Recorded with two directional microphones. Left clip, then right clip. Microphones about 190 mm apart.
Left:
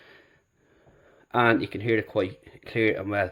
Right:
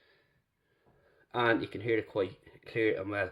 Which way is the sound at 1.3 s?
25° left (ahead or behind).